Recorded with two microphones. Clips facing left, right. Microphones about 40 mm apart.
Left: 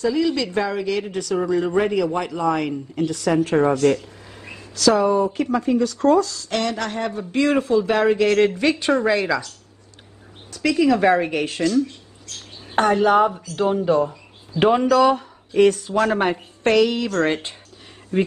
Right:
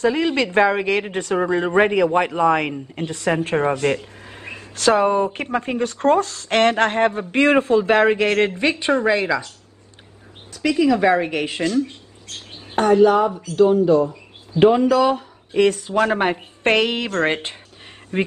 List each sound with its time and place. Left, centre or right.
0.0 s a man's voice: right
4.3 s speech: right
10.5 s a woman's voice: centre
11.4 s mouse: right
13.0 s speech: centre
14.9 s a woman's voice: centre
15.5 s a man's voice: centre
16.6 s speech: right